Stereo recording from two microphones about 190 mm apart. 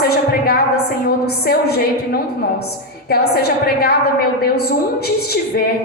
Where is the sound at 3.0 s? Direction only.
55° left (ahead or behind).